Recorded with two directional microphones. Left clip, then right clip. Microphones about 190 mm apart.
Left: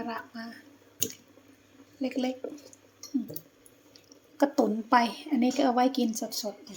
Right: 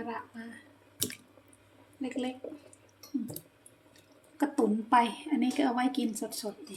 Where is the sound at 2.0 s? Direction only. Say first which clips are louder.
Left 5 dB; 20° left (ahead or behind).